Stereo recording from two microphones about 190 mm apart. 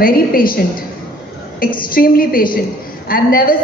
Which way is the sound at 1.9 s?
50° left (ahead or behind).